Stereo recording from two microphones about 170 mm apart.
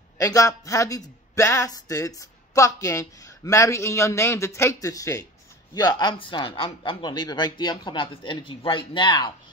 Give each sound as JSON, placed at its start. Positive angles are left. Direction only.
{"t": 0.2, "sound": "a woman's voice", "side_deg": 20}